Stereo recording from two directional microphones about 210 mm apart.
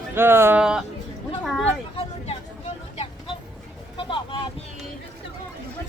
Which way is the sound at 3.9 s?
25° left (ahead or behind).